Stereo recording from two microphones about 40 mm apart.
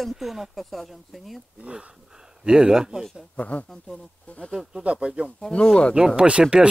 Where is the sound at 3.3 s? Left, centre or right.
Left.